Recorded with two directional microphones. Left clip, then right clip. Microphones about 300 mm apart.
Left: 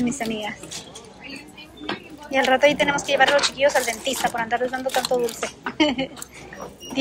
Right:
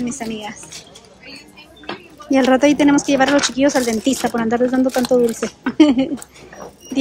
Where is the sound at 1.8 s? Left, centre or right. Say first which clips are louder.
Even; centre.